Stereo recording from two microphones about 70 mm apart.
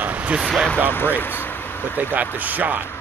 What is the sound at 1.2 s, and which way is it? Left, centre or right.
Speech, left.